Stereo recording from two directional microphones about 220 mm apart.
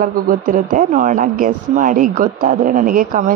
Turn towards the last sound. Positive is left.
turn(degrees=-40)  # may be behind; listen again after turning